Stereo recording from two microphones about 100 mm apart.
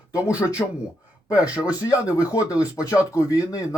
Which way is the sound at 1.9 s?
35° left (ahead or behind).